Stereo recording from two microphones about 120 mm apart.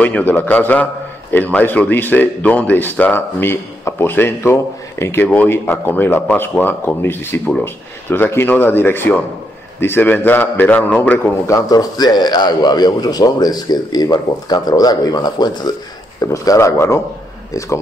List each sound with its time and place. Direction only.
0.0 s speech: 15° left (ahead or behind)
11.4 s a man's voice: 30° left (ahead or behind)